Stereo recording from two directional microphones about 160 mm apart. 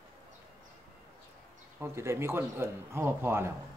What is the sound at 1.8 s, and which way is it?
Speech, 15° right (ahead or behind).